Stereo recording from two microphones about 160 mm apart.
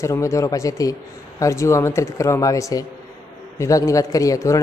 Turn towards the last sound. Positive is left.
turn(degrees=20)  # may be behind; listen again after turning